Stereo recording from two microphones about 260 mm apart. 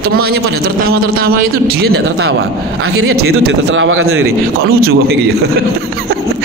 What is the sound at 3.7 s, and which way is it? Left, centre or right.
Speech, right.